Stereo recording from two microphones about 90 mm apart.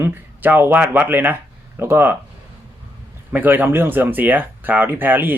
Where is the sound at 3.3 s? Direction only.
20° right (ahead or behind).